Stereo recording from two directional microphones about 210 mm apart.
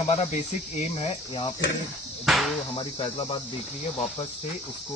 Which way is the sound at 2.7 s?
20° left (ahead or behind).